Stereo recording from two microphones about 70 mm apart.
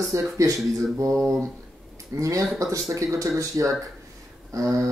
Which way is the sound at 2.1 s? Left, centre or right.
Right.